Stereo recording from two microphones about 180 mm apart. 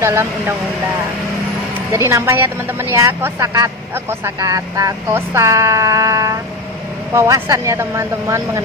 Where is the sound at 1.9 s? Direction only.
15° right (ahead or behind).